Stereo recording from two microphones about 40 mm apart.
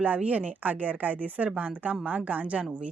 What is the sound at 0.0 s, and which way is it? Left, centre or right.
A woman's voice, right.